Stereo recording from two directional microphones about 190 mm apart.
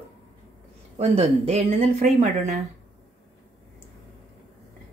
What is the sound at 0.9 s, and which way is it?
Speech, 35° right (ahead or behind).